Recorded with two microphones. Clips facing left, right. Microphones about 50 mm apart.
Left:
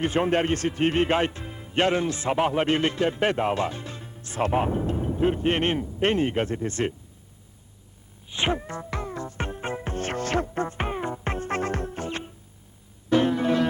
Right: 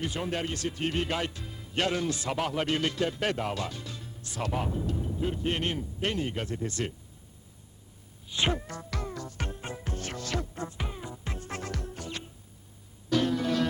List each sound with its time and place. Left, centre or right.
0.0 s speech: left
8.3 s music: left